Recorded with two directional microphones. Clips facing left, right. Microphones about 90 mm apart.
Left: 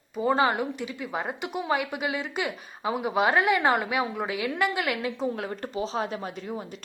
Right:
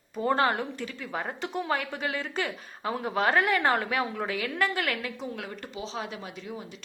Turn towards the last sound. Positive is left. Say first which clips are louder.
# left 5 dB
turn(degrees=45)  # may be behind; listen again after turning